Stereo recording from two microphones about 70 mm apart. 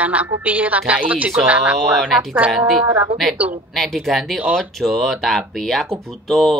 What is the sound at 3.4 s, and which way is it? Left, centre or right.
Speech, right.